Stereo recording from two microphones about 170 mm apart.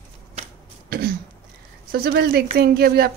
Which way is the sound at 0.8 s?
65° right (ahead or behind).